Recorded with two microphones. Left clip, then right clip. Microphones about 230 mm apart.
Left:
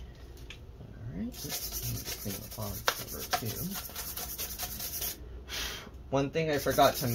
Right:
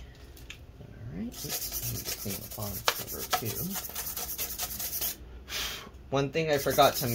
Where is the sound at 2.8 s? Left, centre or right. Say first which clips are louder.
Right 2 dB; right.